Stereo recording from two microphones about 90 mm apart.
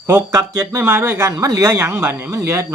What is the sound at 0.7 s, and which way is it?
Speech, 25° right (ahead or behind).